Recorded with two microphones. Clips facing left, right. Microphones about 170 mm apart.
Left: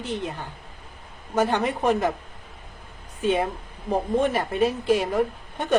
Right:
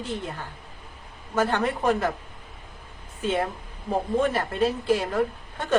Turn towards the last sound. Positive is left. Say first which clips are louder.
# left 1 dB
turn(degrees=15)  # may be behind; listen again after turning